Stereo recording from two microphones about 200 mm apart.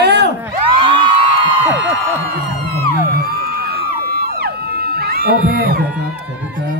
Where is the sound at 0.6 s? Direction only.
25° right (ahead or behind).